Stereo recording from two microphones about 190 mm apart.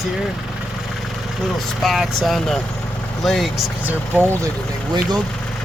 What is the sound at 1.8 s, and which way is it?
Speech, centre (ahead or behind).